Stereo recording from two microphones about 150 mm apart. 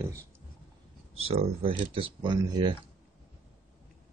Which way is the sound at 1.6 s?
35° right (ahead or behind).